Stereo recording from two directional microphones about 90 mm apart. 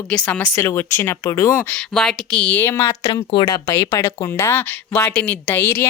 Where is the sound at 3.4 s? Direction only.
45° left (ahead or behind).